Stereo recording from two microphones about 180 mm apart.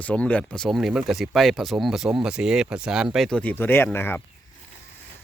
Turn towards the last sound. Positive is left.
turn(degrees=10)  # may be behind; listen again after turning